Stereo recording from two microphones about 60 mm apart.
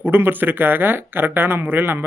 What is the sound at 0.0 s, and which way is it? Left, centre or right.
Speech, right.